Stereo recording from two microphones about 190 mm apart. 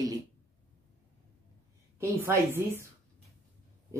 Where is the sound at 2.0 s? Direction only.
10° right (ahead or behind).